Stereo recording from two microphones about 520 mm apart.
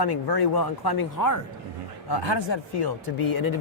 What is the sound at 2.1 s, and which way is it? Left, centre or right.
Speech, left.